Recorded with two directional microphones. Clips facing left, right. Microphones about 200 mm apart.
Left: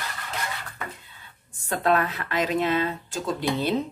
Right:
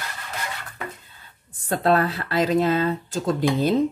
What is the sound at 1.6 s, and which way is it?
Speech, 35° right (ahead or behind).